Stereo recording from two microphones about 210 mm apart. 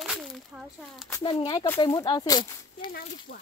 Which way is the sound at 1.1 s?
15° left (ahead or behind).